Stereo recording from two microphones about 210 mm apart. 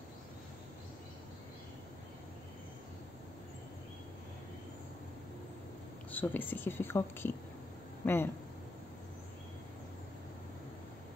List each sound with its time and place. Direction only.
6.1 s speech: 10° left (ahead or behind)